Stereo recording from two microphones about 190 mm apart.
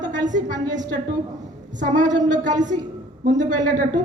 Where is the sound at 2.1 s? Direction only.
40° right (ahead or behind).